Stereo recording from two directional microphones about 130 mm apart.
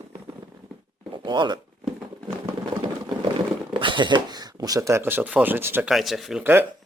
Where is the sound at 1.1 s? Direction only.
35° right (ahead or behind).